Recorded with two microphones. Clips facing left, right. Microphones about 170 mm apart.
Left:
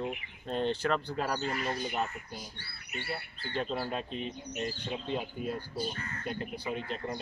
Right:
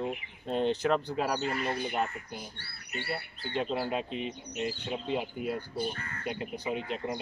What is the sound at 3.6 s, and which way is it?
Speech, 10° right (ahead or behind).